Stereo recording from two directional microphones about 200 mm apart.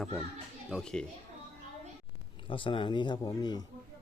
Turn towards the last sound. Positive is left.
turn(degrees=20)  # may be behind; listen again after turning